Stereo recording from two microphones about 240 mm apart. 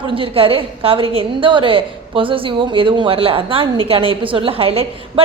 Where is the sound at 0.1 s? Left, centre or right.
Right.